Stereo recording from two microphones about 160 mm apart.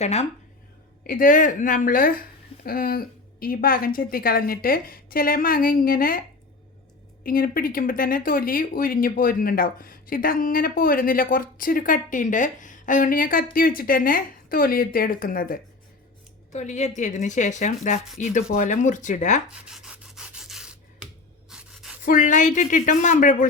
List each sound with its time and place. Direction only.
0.0 s speech: 45° left (ahead or behind)
1.0 s speech: 60° left (ahead or behind)
7.3 s speech: 65° left (ahead or behind)
16.5 s speech: 45° left (ahead or behind)
19.6 s sanding: 5° right (ahead or behind)
21.5 s a sound: 5° right (ahead or behind)
22.0 s speech: 50° left (ahead or behind)